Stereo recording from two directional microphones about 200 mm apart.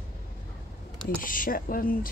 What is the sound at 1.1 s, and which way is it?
Speech, 45° left (ahead or behind).